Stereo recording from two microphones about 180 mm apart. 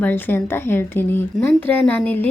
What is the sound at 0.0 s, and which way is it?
Speech, 10° left (ahead or behind).